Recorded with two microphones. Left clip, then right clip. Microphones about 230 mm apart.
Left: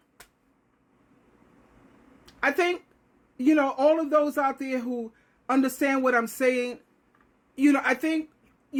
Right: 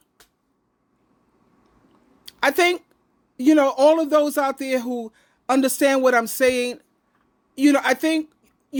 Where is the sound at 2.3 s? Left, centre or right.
Right.